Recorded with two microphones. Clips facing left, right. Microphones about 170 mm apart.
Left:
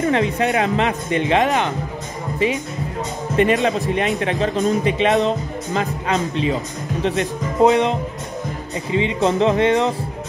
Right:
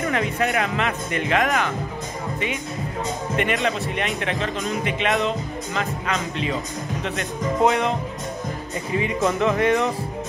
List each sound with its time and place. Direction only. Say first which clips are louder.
0.0 s a woman's voice: left 5 dB; 30° left (ahead or behind)
8.9 s speech: left 4 dB; 25° left (ahead or behind)